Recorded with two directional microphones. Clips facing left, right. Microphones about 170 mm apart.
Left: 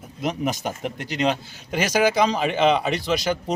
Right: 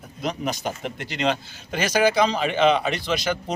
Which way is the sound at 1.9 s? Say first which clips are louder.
Even; 40° left (ahead or behind).